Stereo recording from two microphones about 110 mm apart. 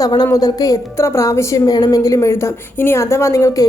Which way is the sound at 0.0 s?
40° left (ahead or behind).